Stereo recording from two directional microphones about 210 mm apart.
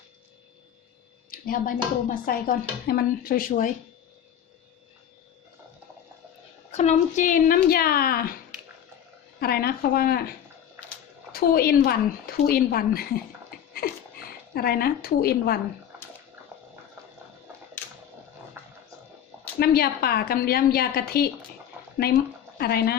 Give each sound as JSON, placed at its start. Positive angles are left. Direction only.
{"t": 1.3, "sound": "speech", "side_deg": 45}
{"t": 6.7, "sound": "speech", "side_deg": 30}
{"t": 9.4, "sound": "speech", "side_deg": 45}
{"t": 11.3, "sound": "speech", "side_deg": 45}
{"t": 13.8, "sound": "a sound", "side_deg": 45}
{"t": 14.5, "sound": "speech", "side_deg": 45}
{"t": 18.6, "sound": "wild animals", "side_deg": -10}
{"t": 19.5, "sound": "speech", "side_deg": 45}
{"t": 22.5, "sound": "speech", "side_deg": 50}